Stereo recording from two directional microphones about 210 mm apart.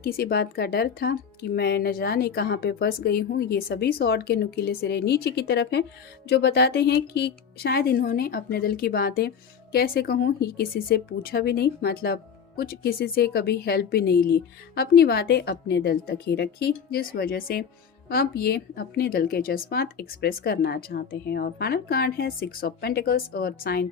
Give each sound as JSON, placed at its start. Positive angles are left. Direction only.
{"t": 0.0, "sound": "a woman's voice", "side_deg": 45}